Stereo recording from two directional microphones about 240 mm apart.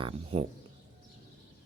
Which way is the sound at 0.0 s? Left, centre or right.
Right.